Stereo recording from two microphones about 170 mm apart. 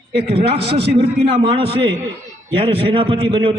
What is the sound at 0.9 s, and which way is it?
A man's voice, 35° right (ahead or behind).